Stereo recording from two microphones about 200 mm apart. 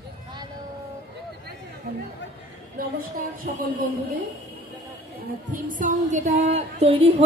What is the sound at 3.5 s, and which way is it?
Speech, 40° right (ahead or behind).